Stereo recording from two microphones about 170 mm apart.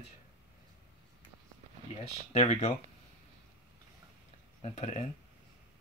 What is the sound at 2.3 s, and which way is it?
Speech, 40° left (ahead or behind).